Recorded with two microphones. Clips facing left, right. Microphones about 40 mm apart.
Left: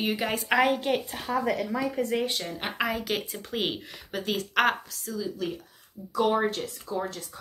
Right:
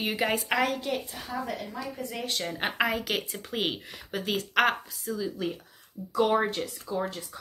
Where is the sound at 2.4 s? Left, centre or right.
Centre.